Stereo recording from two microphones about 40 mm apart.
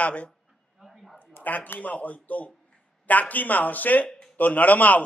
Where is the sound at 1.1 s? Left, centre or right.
Left.